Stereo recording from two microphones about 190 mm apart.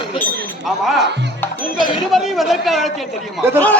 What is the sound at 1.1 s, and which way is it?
Speech, 65° right (ahead or behind).